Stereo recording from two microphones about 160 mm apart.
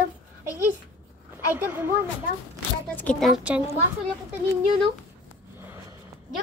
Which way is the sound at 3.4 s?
10° right (ahead or behind).